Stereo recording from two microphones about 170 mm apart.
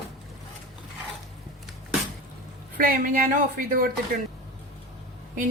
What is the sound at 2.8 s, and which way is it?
Speech, 55° right (ahead or behind).